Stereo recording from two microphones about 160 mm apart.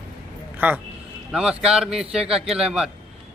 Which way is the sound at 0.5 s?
10° right (ahead or behind).